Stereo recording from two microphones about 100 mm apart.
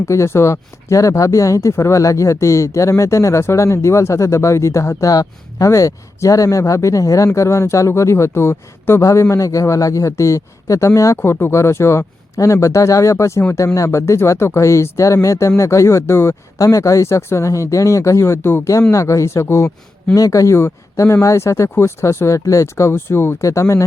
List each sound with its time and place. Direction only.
0.0 s speech: 30° left (ahead or behind)